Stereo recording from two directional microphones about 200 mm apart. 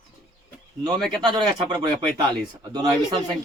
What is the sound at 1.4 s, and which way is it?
Speech, 20° right (ahead or behind).